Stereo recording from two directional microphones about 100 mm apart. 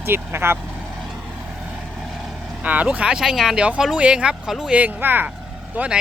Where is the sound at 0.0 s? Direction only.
20° right (ahead or behind).